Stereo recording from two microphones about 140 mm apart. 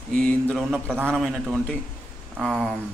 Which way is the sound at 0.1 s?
5° left (ahead or behind).